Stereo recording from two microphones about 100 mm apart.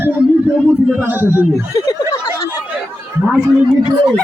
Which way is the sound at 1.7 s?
45° left (ahead or behind).